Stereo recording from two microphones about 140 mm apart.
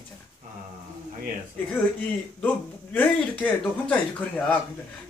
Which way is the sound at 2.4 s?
10° left (ahead or behind).